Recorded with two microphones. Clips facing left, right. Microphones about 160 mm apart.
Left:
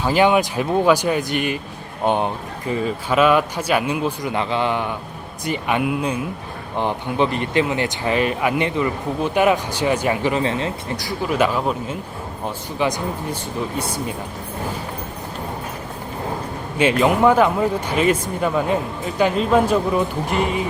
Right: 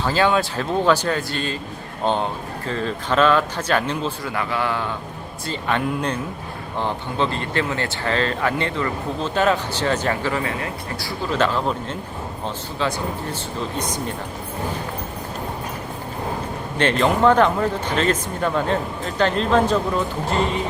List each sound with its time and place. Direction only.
0.0 s speech: 15° left (ahead or behind)
16.7 s speech: 10° left (ahead or behind)